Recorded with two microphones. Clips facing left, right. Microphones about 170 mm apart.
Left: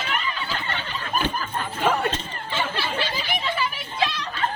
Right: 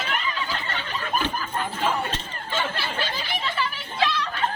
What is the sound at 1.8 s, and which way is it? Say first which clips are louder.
Chatter: left 4 dB; 65° left (ahead or behind).